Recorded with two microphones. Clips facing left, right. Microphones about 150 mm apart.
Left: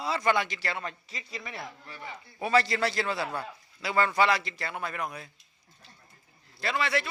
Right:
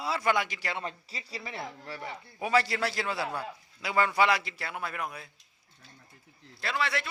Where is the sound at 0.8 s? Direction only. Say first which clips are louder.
Even; 30° right (ahead or behind).